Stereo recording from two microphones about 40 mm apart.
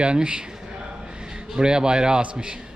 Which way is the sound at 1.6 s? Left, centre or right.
Right.